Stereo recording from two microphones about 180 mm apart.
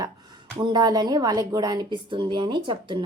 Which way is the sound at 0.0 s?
25° right (ahead or behind).